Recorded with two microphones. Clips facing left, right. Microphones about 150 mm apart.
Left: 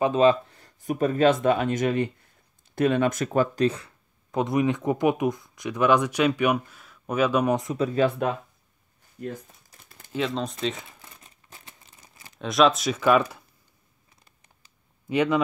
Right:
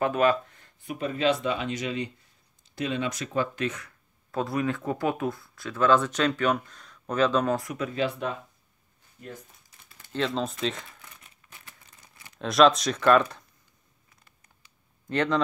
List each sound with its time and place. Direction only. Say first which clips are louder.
0.0 s speech: left 4 dB; 20° left (ahead or behind)
4.3 s speech: left 4 dB; 20° left (ahead or behind)
7.9 s speech: left 6 dB; 45° left (ahead or behind)
9.7 s typing: left 3 dB; 45° left (ahead or behind)
10.1 s speech: left 1 dB; centre (ahead or behind)
10.9 s crumpling: left 1 dB; 30° left (ahead or behind)
12.4 s speech: right 1 dB; centre (ahead or behind)
15.0 s speech: left 3 dB; 10° left (ahead or behind)